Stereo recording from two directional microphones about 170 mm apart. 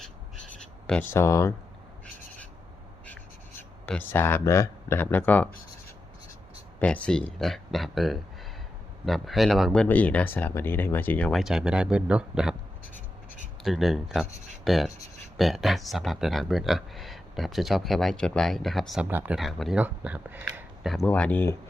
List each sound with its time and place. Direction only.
0.9 s speech: 10° left (ahead or behind)
3.1 s speech: 10° left (ahead or behind)
6.7 s speech: 10° left (ahead or behind)
13.6 s speech: centre (ahead or behind)
21.1 s speech: 10° left (ahead or behind)